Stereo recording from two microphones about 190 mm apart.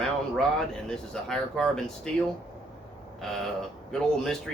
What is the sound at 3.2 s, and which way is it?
Speech, centre (ahead or behind).